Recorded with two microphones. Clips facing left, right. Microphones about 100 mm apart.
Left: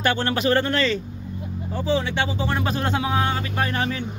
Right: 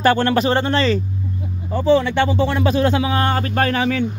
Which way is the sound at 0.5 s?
25° right (ahead or behind).